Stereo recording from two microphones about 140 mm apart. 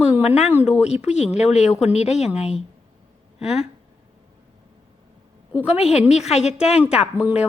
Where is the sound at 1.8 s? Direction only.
50° left (ahead or behind).